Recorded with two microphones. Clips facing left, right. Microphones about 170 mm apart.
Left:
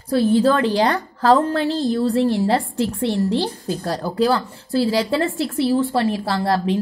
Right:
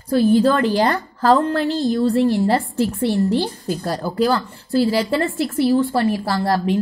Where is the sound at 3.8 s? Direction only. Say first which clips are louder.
Even; centre (ahead or behind).